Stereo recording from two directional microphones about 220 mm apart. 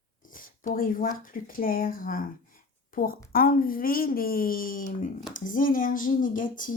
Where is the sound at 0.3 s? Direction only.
40° left (ahead or behind).